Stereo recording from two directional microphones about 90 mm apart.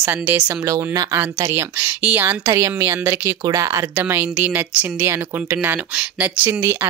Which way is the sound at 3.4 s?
40° right (ahead or behind).